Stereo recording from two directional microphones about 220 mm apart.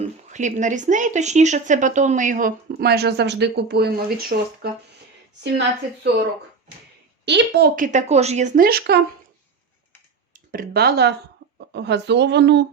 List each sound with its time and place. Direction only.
0.3 s speech: 35° right (ahead or behind); by 6.1 s 50° right (ahead or behind)
7.3 s speech: 50° right (ahead or behind)
10.3 s speech: 40° right (ahead or behind)